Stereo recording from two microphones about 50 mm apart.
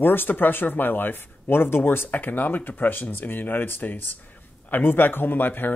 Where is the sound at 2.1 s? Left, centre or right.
Left.